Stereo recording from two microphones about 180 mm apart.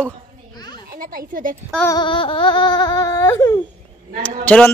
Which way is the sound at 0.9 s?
55° right (ahead or behind).